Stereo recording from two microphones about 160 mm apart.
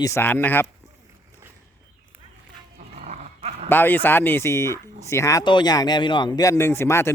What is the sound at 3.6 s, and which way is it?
Speech, 10° left (ahead or behind).